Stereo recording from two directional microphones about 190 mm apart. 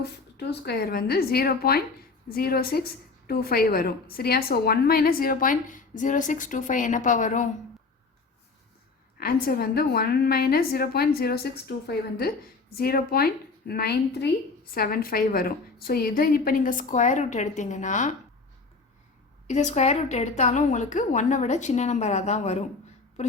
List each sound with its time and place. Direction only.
0.0 s a woman's voice: 60° left (ahead or behind); by 7.4 s 40° left (ahead or behind)
9.1 s a woman's voice: 50° left (ahead or behind)
19.5 s a woman's voice: 40° left (ahead or behind)